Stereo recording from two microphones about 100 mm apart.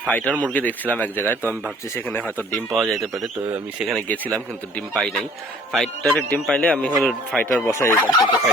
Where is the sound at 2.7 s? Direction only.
Centre (ahead or behind).